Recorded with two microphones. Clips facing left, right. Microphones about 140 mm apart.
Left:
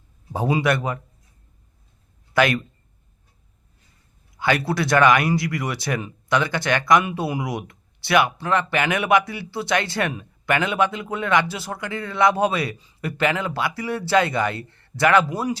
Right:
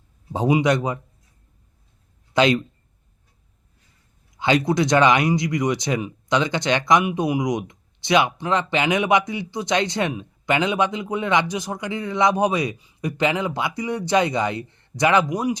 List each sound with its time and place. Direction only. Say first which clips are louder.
0.3 s speech: right 2 dB; 20° right (ahead or behind)
2.3 s speech: right 2 dB; 20° right (ahead or behind)
4.4 s speech: right 3 dB; 20° right (ahead or behind)